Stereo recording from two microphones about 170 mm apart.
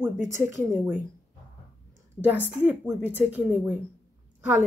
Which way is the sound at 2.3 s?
10° right (ahead or behind).